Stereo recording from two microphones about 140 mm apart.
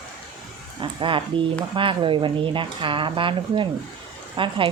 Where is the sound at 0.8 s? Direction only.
35° right (ahead or behind).